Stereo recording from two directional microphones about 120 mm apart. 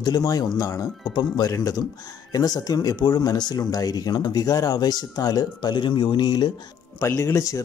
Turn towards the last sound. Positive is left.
turn(degrees=25)  # may be behind; listen again after turning